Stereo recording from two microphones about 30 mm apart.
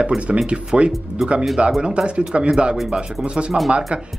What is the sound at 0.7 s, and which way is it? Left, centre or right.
Speech, right.